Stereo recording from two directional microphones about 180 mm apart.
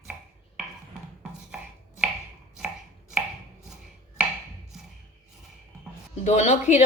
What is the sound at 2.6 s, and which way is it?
Chopping, 5° right (ahead or behind).